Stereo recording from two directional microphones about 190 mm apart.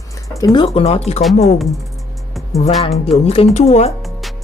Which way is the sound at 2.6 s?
30° left (ahead or behind).